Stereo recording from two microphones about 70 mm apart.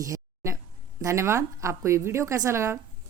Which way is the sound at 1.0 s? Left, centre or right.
Right.